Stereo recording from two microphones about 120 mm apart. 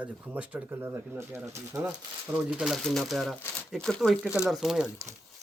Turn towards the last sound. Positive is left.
turn(degrees=-5)  # may be behind; listen again after turning